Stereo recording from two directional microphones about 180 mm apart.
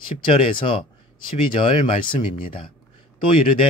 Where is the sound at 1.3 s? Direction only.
30° left (ahead or behind).